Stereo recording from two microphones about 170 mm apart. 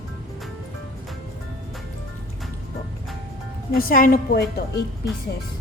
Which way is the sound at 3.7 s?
60° left (ahead or behind).